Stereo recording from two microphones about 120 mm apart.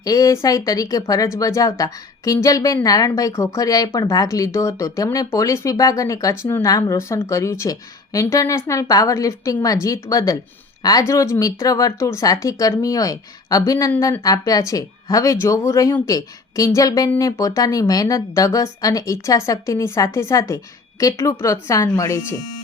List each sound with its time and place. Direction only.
0.0 s speech: 30° left (ahead or behind)